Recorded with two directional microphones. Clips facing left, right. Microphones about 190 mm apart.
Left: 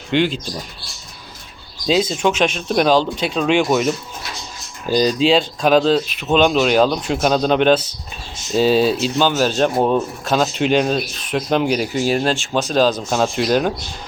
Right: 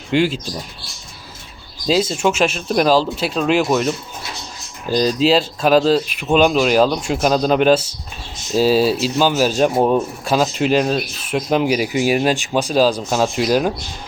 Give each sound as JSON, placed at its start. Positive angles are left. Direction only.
{"t": 0.1, "sound": "speech", "side_deg": -5}
{"t": 1.9, "sound": "speech", "side_deg": -5}